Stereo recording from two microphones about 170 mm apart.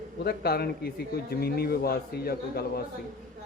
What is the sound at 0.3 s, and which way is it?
A man's voice, 65° left (ahead or behind).